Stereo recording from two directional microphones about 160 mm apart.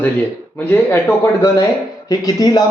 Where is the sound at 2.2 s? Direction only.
25° left (ahead or behind).